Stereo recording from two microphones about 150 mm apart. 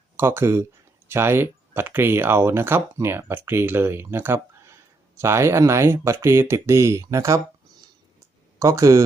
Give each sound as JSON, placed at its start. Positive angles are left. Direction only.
{"t": 0.2, "sound": "speech", "side_deg": -15}
{"t": 8.5, "sound": "speech", "side_deg": -20}